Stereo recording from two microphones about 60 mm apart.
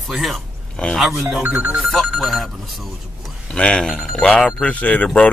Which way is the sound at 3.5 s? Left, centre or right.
Centre.